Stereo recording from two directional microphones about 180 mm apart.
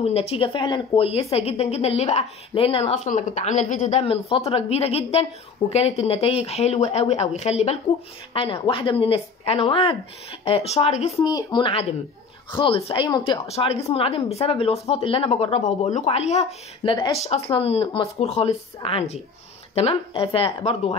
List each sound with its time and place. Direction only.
0.0 s a woman's voice: 35° left (ahead or behind)
11.2 s speech: 25° left (ahead or behind)